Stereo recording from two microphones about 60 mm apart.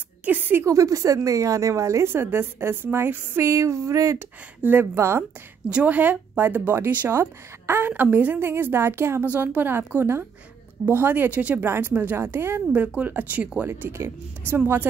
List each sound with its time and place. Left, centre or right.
0.2 s a woman's voice: right
0.7 s a woman's voice: right
2.0 s speech: right
3.3 s a woman's voice: right
4.6 s a woman's voice: right
4.9 s speech: right
5.7 s a woman's voice: right
7.1 s speech: right
7.9 s a woman's voice: right
8.4 s speech: right
9.2 s speech: right
12.7 s a woman's voice: right
13.7 s speech: right